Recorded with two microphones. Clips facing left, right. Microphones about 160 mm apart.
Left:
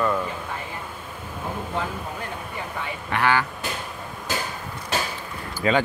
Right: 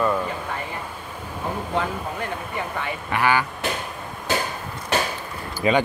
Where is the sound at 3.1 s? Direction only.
10° right (ahead or behind).